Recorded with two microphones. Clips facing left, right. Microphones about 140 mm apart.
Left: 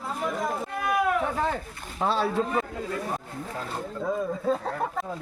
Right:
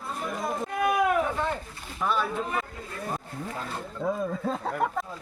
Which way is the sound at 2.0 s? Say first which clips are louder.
Left 3 dB; 30° left (ahead or behind).